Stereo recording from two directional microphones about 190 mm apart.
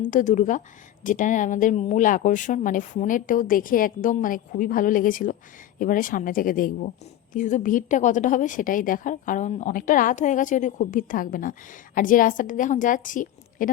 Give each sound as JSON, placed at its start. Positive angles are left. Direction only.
{"t": 0.0, "sound": "a woman's voice", "side_deg": 40}